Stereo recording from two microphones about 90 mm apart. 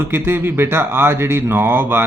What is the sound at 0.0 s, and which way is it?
A man's voice, 25° right (ahead or behind).